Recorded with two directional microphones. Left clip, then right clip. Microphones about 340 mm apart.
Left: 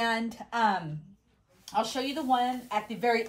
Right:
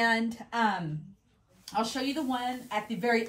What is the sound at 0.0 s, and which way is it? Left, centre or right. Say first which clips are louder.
Speech: right 2 dB; centre.